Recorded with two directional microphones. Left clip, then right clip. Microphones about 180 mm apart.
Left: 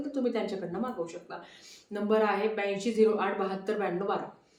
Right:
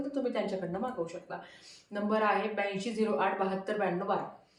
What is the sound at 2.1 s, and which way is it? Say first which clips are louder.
Speech: left 2 dB; 15° left (ahead or behind).